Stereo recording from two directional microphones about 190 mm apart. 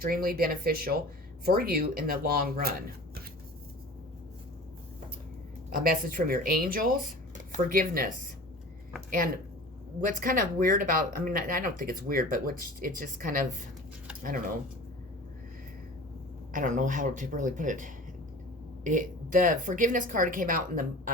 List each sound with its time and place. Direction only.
0.0 s speech: 50° right (ahead or behind)
5.7 s speech: 45° right (ahead or behind)
16.5 s speech: 45° right (ahead or behind)